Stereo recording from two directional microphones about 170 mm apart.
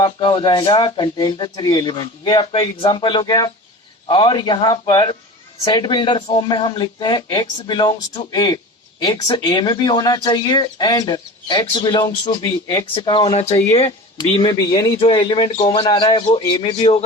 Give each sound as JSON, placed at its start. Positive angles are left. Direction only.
{"t": 0.0, "sound": "speech", "side_deg": 25}
{"t": 14.6, "sound": "speech", "side_deg": 20}